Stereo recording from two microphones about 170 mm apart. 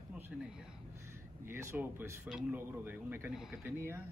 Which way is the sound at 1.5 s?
15° right (ahead or behind).